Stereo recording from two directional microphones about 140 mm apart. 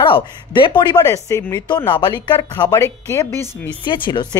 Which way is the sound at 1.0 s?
20° left (ahead or behind).